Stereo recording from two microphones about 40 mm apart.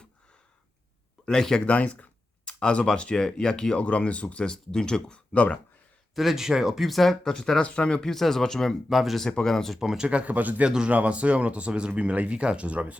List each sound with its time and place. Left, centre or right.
1.2 s speech: centre
1.6 s speech: left; by 3.8 s centre
3.8 s speech: left
4.4 s speech: centre
5.1 s speech: left
6.1 s speech: centre
7.6 s speech: left
8.1 s speech: centre
8.9 s speech: centre
9.4 s speech: centre
9.7 s speech: centre
10.1 s speech: right